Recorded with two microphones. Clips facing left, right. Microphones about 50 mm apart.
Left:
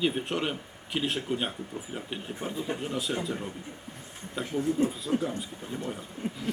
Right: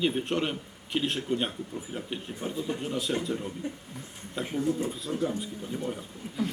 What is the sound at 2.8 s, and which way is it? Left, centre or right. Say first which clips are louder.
Speech: right 1 dB; centre.